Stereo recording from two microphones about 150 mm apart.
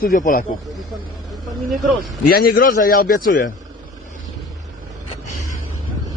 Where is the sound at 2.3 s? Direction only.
80° left.